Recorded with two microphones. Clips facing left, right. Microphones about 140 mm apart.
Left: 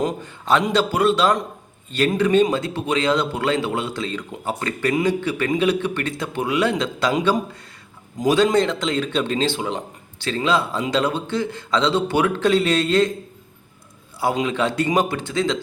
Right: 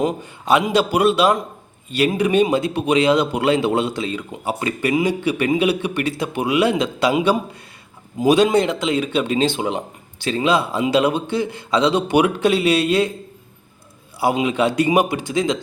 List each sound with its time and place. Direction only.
0.0 s speech: 10° right (ahead or behind)
14.2 s speech: 10° right (ahead or behind)